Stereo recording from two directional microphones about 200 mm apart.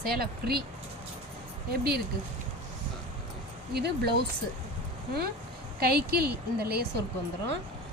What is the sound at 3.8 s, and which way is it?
Speech, 55° right (ahead or behind).